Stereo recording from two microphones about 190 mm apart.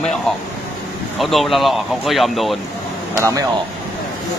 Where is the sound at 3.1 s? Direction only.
15° right (ahead or behind).